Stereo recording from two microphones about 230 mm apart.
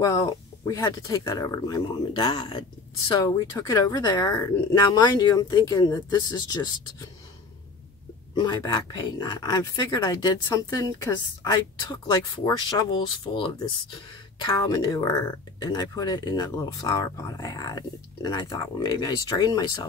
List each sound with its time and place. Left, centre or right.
0.0 s speech: centre
8.4 s speech: centre